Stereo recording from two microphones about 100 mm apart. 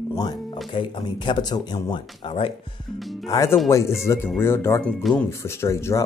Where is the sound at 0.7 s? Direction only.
55° left (ahead or behind).